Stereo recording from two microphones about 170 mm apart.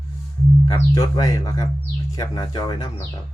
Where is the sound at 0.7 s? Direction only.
20° left (ahead or behind).